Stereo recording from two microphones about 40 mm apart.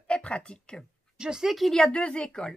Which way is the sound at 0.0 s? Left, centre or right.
Left.